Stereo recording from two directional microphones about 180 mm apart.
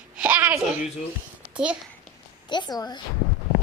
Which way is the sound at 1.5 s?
5° right (ahead or behind).